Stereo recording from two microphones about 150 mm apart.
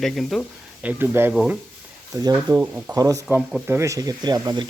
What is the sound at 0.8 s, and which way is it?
Speech, 15° right (ahead or behind).